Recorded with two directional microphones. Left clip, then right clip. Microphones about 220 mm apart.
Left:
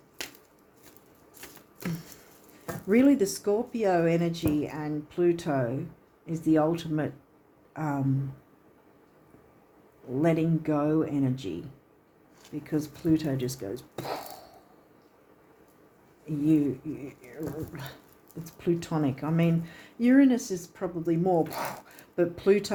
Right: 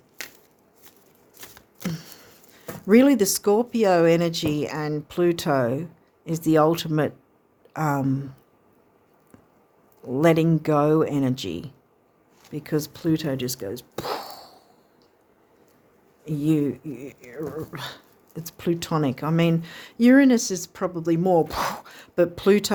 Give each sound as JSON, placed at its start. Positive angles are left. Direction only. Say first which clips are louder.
{"t": 1.4, "sound": "chopping", "louder": "right 4 dB", "side_deg": -35}
{"t": 2.8, "sound": "speech", "louder": "right 6 dB", "side_deg": -45}
{"t": 10.2, "sound": "speech", "louder": "right 7 dB", "side_deg": -45}
{"t": 12.6, "sound": "speech", "louder": "right 4 dB", "side_deg": -45}
{"t": 16.2, "sound": "speech", "louder": "right 2 dB", "side_deg": -45}